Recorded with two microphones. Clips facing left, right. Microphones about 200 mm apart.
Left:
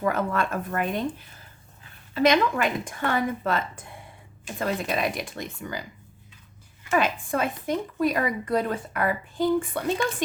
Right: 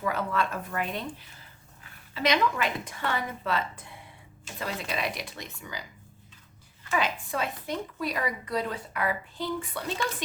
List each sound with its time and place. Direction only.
0.0 s a woman's voice: 50° left (ahead or behind)
2.1 s a woman's voice: 50° left (ahead or behind)
6.9 s a woman's voice: 50° left (ahead or behind)